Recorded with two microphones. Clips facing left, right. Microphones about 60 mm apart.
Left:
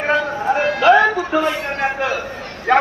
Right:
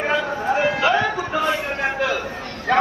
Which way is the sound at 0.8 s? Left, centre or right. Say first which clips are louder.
Left 7 dB; left.